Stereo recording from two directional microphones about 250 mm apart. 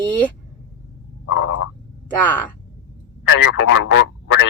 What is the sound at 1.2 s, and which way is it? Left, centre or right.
Frog, left.